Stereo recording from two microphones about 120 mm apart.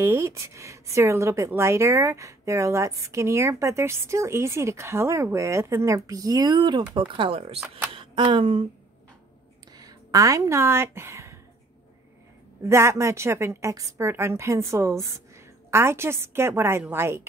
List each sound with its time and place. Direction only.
0.0 s a woman's voice: 20° right (ahead or behind); by 8.6 s 45° right (ahead or behind)
9.8 s a woman's voice: 30° right (ahead or behind)
12.6 s a woman's voice: 25° right (ahead or behind)